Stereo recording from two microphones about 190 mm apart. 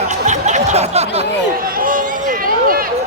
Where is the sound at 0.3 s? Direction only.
40° right (ahead or behind).